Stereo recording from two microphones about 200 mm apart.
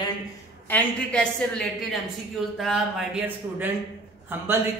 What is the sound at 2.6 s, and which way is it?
Speech, centre (ahead or behind).